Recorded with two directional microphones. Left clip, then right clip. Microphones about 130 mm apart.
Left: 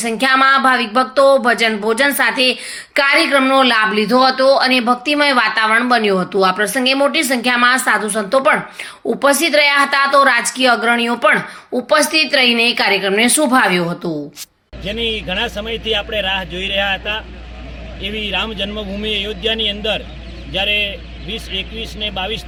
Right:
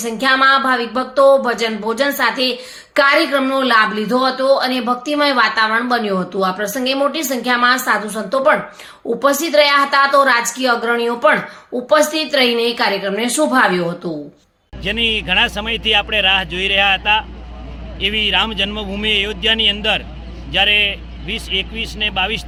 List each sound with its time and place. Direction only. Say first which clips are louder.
0.0 s a woman's voice: left 1 dB; 15° left (ahead or behind); by 14.1 s 35° left (ahead or behind)
15.1 s speech: right 5 dB; 75° right (ahead or behind)
15.6 s speech: right 3 dB; 90° right
18.0 s speech: right 5 dB; 65° right (ahead or behind)
18.7 s speech: right 3 dB; 10° right (ahead or behind)